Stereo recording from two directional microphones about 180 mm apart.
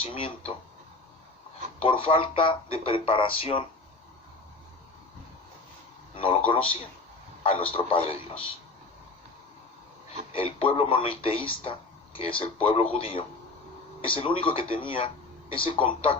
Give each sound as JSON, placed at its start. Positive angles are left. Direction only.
{"t": 0.0, "sound": "speech", "side_deg": 30}
{"t": 1.8, "sound": "speech", "side_deg": 30}
{"t": 6.1, "sound": "speech", "side_deg": 30}
{"t": 10.3, "sound": "a man's voice", "side_deg": 30}